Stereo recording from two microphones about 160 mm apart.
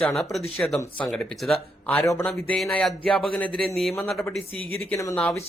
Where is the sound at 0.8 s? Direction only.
15° left (ahead or behind).